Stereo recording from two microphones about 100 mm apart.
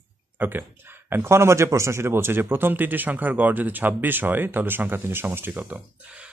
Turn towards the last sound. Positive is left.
turn(degrees=-20)  # may be behind; listen again after turning